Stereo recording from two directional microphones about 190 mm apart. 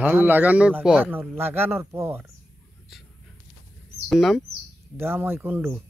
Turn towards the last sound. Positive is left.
turn(degrees=-10)  # may be behind; listen again after turning